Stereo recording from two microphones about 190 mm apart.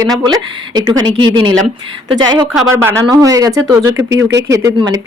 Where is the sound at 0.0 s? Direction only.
20° right (ahead or behind).